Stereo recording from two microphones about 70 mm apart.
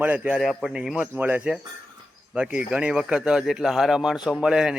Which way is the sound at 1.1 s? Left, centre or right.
Right.